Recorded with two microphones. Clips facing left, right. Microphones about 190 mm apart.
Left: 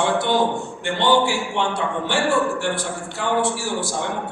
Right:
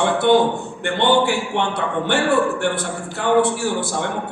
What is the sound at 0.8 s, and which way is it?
A man's voice, 60° right (ahead or behind).